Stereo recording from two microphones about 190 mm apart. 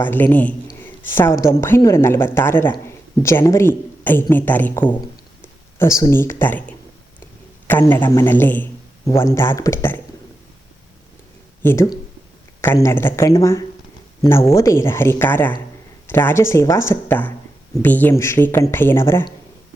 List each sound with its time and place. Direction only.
0.0 s a man's voice: 10° left (ahead or behind)
11.6 s a man's voice: 15° left (ahead or behind)